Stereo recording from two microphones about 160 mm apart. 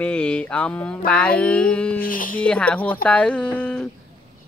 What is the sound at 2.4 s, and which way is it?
Mantra, 5° left (ahead or behind).